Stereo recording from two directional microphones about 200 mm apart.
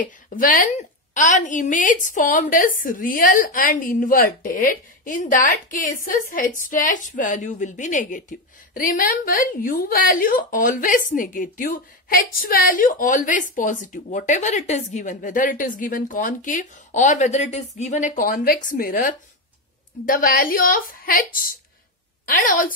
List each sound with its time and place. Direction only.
0.0 s a woman's voice: 40° left (ahead or behind)